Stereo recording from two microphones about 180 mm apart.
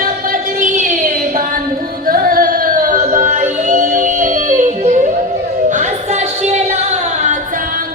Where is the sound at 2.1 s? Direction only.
50° right (ahead or behind).